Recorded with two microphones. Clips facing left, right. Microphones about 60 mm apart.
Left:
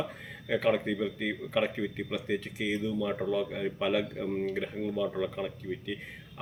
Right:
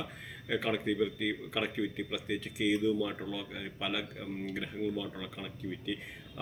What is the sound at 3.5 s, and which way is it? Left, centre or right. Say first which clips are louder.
Speech: left 9 dB; centre.